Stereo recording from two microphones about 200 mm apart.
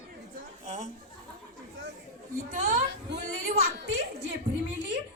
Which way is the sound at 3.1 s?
60° right (ahead or behind).